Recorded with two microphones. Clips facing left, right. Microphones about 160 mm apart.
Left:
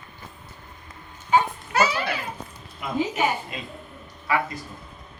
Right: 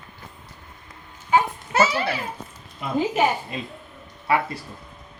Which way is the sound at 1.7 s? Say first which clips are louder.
Right 2 dB; 25° right (ahead or behind).